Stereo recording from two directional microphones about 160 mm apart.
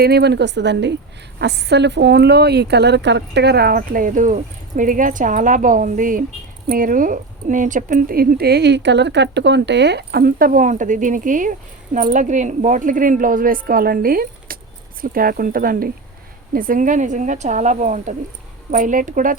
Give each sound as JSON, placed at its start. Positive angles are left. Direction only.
{"t": 0.0, "sound": "speech", "side_deg": -90}